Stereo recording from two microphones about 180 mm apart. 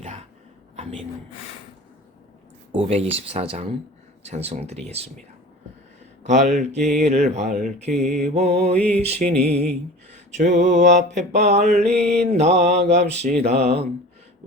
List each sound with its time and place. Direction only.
0.0 s a sound: 40° right (ahead or behind)
2.7 s mantra: 35° right (ahead or behind)
6.2 s mantra: 40° right (ahead or behind)
7.9 s mantra: 5° left (ahead or behind)
8.4 s mantra: 35° right (ahead or behind)
9.3 s speech: 10° left (ahead or behind)
10.1 s mantra: 40° right (ahead or behind)